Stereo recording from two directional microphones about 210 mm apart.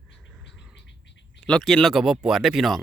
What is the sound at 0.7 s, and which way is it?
Bird, 55° left (ahead or behind).